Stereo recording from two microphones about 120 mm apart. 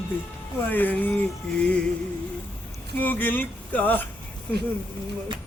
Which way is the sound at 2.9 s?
15° left (ahead or behind).